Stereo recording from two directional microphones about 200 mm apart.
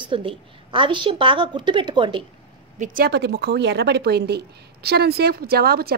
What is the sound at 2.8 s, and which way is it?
A woman's voice, 45° right (ahead or behind).